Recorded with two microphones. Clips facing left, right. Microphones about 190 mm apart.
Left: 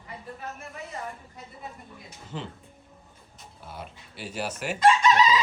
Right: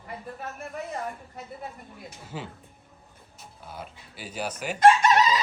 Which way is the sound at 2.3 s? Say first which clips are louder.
Left 1 dB; 10° right (ahead or behind).